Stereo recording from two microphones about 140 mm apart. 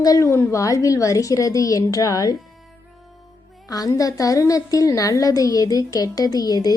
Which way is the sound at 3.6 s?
25° left (ahead or behind).